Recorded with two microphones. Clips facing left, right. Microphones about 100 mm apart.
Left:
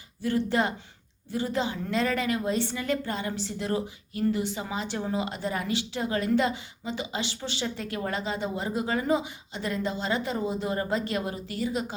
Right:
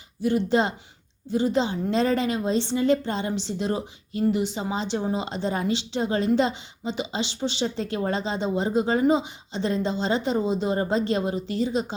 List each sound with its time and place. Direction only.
0.2 s a woman's voice: 20° right (ahead or behind)